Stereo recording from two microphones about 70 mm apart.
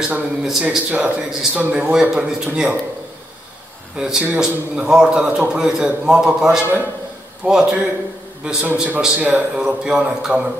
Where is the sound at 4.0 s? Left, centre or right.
Centre.